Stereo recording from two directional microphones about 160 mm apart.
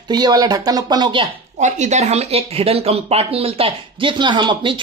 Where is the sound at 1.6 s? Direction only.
45° right (ahead or behind).